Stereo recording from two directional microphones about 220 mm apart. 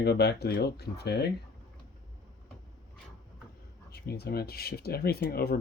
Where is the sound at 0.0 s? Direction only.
50° left (ahead or behind).